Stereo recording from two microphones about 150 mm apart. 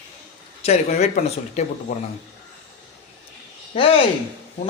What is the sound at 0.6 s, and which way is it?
Speech, 50° left (ahead or behind).